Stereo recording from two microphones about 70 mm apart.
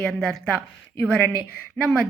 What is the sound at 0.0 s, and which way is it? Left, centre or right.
Speech, centre.